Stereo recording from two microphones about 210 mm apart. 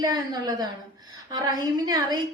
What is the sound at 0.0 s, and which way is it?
A woman's voice, 15° right (ahead or behind).